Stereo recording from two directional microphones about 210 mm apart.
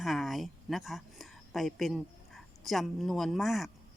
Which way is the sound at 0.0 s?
Centre (ahead or behind).